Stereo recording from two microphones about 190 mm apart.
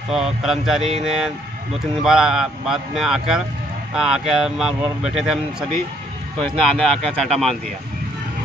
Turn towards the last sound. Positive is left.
turn(degrees=0)  # may be behind; listen again after turning